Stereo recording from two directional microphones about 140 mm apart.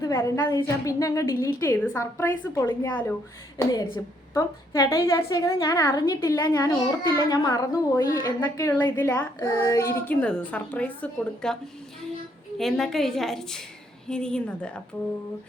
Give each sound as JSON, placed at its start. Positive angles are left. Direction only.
{"t": 0.0, "sound": "a woman's voice", "side_deg": 20}
{"t": 3.6, "sound": "a woman's voice", "side_deg": 25}
{"t": 12.5, "sound": "a woman's voice", "side_deg": 0}